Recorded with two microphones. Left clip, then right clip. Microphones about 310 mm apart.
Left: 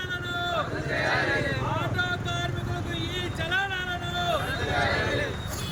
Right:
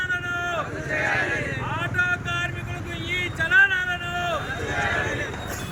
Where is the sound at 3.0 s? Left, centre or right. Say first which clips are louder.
Right 10 dB; centre.